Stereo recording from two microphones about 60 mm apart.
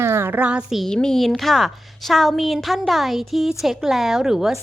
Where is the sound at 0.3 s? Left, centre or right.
Right.